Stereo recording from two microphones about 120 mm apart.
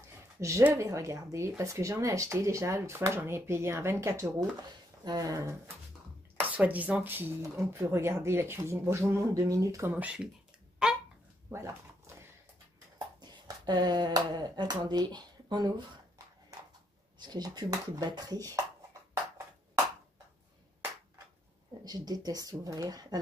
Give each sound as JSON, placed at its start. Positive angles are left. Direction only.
{"t": 0.4, "sound": "speech", "side_deg": -25}
{"t": 6.4, "sound": "speech", "side_deg": -15}
{"t": 9.9, "sound": "speech", "side_deg": -10}
{"t": 10.8, "sound": "goose", "side_deg": -5}
{"t": 11.5, "sound": "a sound", "side_deg": -25}
{"t": 13.2, "sound": "speech", "side_deg": -35}
{"t": 17.2, "sound": "speech", "side_deg": -35}
{"t": 21.8, "sound": "speech", "side_deg": -35}